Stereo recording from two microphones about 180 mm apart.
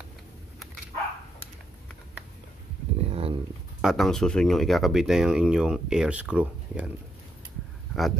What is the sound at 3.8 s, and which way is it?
Speech, centre (ahead or behind).